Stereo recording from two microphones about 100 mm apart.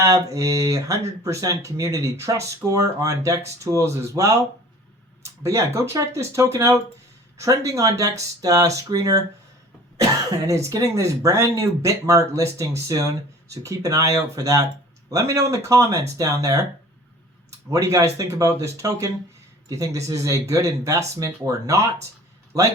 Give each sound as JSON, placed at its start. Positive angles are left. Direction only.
{"t": 0.0, "sound": "speech", "side_deg": -30}
{"t": 10.4, "sound": "speech", "side_deg": -30}
{"t": 17.7, "sound": "speech", "side_deg": -30}